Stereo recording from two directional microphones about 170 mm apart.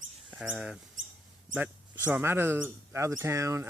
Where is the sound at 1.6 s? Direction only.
10° right (ahead or behind).